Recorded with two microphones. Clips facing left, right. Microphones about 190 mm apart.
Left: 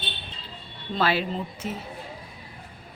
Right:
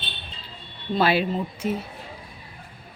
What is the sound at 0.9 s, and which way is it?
Speech, 15° right (ahead or behind).